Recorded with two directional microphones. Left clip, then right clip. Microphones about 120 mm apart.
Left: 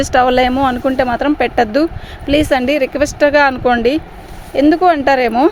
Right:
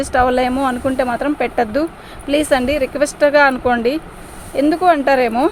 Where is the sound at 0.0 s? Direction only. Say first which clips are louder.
Left 3 dB; 90° left.